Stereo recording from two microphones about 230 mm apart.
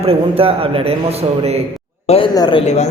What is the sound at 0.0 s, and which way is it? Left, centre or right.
A man's voice, right.